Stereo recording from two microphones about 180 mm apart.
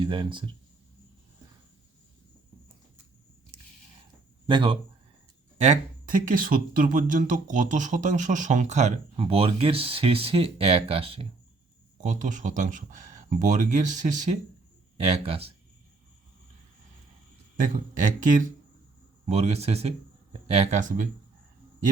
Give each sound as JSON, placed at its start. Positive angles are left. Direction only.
{"t": 0.0, "sound": "speech", "side_deg": -25}
{"t": 4.4, "sound": "speech", "side_deg": -30}
{"t": 5.5, "sound": "speech", "side_deg": -40}
{"t": 12.0, "sound": "speech", "side_deg": -45}
{"t": 17.6, "sound": "speech", "side_deg": -45}